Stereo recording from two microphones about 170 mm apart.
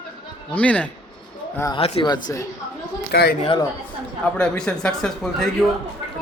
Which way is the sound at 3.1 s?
70° left (ahead or behind).